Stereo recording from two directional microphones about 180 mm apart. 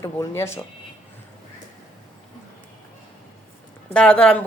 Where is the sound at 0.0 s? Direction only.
15° left (ahead or behind).